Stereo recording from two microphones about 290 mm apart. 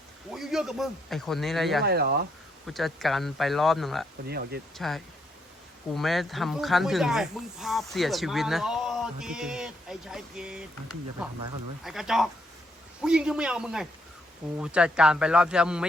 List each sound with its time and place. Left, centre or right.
0.3 s speech: centre
1.8 s speech: right
2.6 s speech: centre
4.3 s speech: right
4.8 s speech: centre
11.8 s speech: centre